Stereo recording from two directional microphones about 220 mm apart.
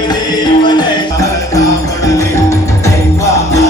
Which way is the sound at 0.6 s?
20° left (ahead or behind).